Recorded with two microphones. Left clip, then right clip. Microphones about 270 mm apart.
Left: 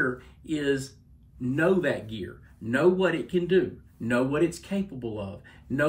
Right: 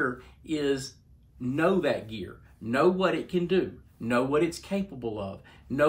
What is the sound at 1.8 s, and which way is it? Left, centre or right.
A man's voice, centre.